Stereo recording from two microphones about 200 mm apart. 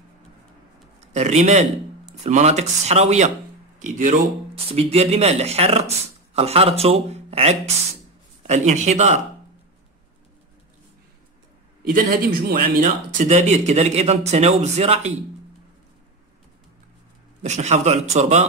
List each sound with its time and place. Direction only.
1.1 s speech: 35° right (ahead or behind)
12.4 s speech: 45° right (ahead or behind)
17.4 s speech: 35° right (ahead or behind)